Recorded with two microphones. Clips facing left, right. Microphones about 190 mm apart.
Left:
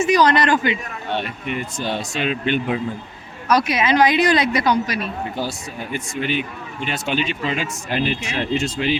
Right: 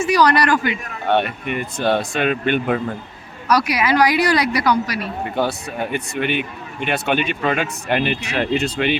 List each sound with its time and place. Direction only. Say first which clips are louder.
0.0 s a man's voice: even; 20° left (ahead or behind)
1.0 s speech: right 7 dB; 60° right (ahead or behind)
3.5 s a woman's voice: even; 25° left (ahead or behind)
5.4 s speech: right 5 dB; 60° right (ahead or behind)